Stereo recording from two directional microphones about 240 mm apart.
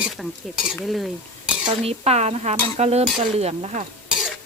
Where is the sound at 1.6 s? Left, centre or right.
Right.